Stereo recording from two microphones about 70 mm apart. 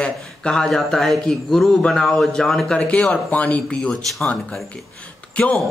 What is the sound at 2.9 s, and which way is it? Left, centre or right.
Speech, centre.